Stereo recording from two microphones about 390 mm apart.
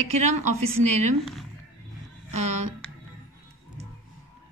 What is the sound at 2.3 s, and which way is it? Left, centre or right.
Speech, right.